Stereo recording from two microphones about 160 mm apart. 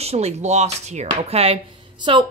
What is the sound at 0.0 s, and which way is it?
A woman's voice, 40° right (ahead or behind).